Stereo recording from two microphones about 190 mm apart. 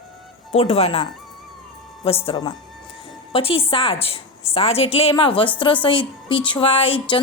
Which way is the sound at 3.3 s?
30° left (ahead or behind).